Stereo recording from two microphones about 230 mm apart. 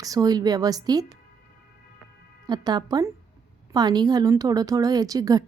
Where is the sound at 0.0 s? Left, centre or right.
Centre.